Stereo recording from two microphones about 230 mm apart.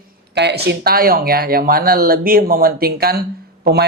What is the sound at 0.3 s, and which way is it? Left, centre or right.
Speech, right.